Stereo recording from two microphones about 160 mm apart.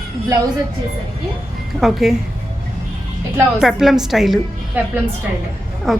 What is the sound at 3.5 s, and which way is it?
A woman's voice, centre (ahead or behind).